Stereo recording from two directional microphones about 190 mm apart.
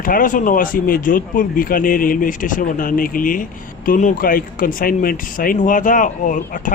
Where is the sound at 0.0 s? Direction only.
45° left (ahead or behind).